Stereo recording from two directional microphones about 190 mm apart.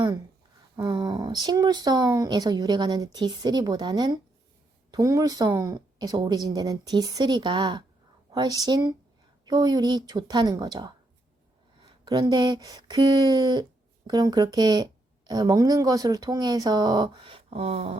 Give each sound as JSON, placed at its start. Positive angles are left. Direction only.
{"t": 0.8, "sound": "speech", "side_deg": -20}